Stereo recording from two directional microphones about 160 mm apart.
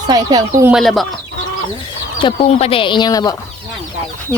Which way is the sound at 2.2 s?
30° left (ahead or behind).